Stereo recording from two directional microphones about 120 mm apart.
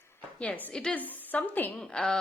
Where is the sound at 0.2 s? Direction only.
15° left (ahead or behind).